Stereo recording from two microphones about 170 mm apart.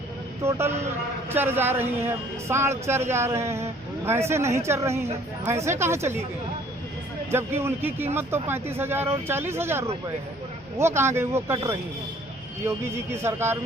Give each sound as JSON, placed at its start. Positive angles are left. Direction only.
{"t": 0.4, "sound": "a man's voice", "side_deg": -15}
{"t": 7.3, "sound": "a man's voice", "side_deg": -15}